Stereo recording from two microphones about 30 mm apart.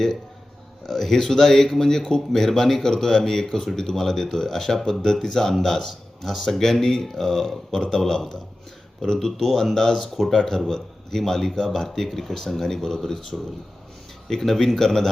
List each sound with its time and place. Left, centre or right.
0.9 s a man's voice: centre
9.6 s speech: centre
10.2 s speech: centre
14.3 s speech: centre